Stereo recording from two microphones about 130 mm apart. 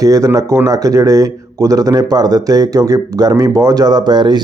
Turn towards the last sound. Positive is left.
turn(degrees=-35)  # may be behind; listen again after turning